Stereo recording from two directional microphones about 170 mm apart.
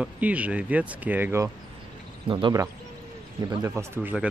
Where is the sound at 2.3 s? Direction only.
30° right (ahead or behind); by 4.3 s 10° right (ahead or behind).